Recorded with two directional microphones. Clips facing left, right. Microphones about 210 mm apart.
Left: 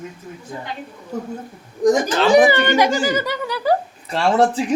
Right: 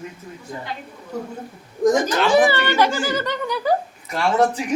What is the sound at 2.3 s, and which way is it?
Speech, 15° left (ahead or behind).